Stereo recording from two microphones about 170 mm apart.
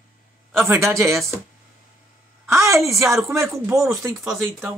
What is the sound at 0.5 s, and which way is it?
Speech, 15° right (ahead or behind).